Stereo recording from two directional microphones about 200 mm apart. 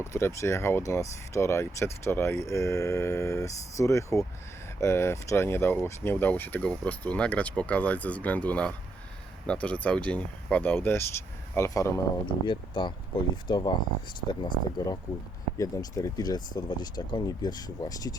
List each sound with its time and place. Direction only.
0.0 s speech: 15° left (ahead or behind)